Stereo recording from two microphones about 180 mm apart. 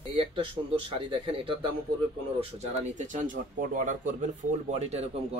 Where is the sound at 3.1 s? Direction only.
45° right (ahead or behind).